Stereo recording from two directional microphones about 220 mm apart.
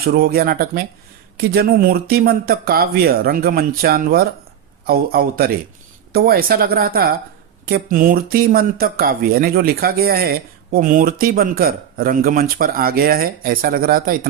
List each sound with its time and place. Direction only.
0.0 s speech: 45° right (ahead or behind)